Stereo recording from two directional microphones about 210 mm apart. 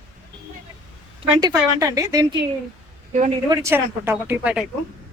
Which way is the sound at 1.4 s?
15° right (ahead or behind).